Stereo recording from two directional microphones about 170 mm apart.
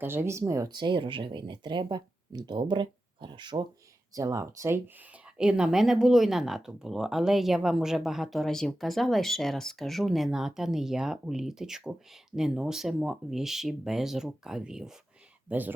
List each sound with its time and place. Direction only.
0.0 s speech: 15° right (ahead or behind)
5.4 s speech: 5° right (ahead or behind)